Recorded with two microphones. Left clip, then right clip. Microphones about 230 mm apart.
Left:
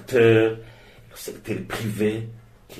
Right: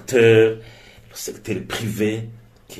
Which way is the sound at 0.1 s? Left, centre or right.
Right.